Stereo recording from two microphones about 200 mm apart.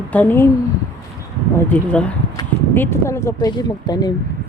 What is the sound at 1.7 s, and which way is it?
A woman's voice, 5° left (ahead or behind).